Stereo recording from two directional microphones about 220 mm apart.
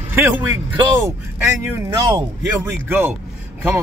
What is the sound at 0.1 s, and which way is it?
A man's voice, 15° right (ahead or behind).